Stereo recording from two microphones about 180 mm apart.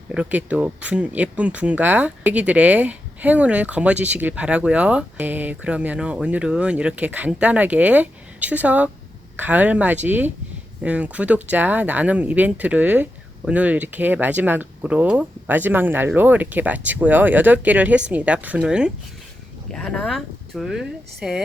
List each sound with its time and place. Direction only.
0.1 s speech: 5° right (ahead or behind)